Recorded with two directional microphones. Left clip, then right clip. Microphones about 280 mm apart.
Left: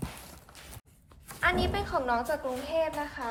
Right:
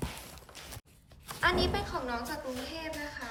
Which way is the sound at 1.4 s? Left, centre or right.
Centre.